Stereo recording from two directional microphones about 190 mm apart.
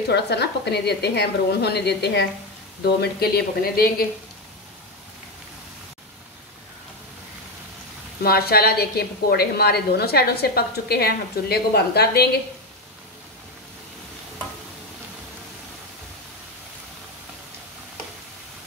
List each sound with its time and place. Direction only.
0.1 s a woman's voice: 60° left (ahead or behind)
8.2 s a woman's voice: 55° left (ahead or behind)